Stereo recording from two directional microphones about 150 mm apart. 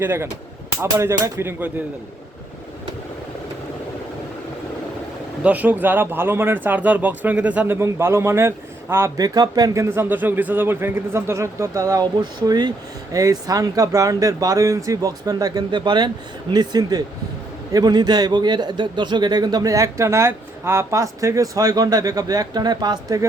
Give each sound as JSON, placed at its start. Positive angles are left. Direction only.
{"t": 0.0, "sound": "speech", "side_deg": -15}
{"t": 5.4, "sound": "a man's voice", "side_deg": -10}